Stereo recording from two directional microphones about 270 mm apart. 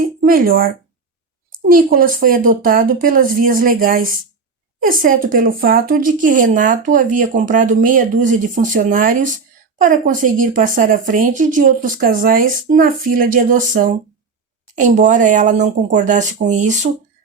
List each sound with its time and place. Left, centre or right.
0.2 s a woman's voice: right